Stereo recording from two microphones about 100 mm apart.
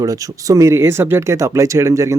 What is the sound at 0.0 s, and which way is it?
Speech, 35° right (ahead or behind).